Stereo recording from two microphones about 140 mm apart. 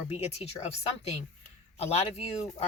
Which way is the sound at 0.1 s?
50° left (ahead or behind).